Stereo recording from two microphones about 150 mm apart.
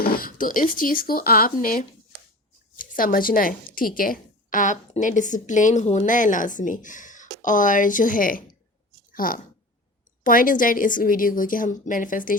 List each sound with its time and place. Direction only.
0.0 s a woman's voice: 80° left